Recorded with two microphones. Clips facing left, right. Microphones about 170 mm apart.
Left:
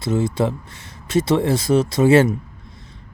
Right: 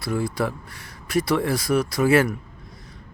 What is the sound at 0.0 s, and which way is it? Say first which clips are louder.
Speech: left 5 dB; 25° left (ahead or behind).